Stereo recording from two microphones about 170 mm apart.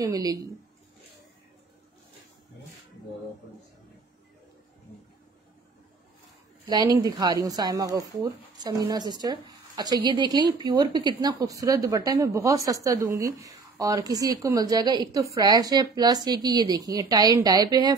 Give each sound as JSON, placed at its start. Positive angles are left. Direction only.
{"t": 0.0, "sound": "speech", "side_deg": -20}
{"t": 6.7, "sound": "speech", "side_deg": -20}